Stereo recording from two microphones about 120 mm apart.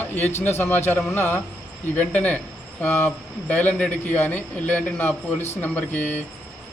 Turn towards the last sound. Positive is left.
turn(degrees=15)  # may be behind; listen again after turning